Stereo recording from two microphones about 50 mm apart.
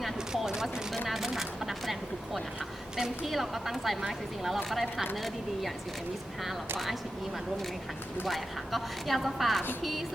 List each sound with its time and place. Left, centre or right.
0.0 s a sound: centre
1.0 s single-lens reflex camera: centre
3.2 s a woman's voice: centre
8.2 s a woman's voice: centre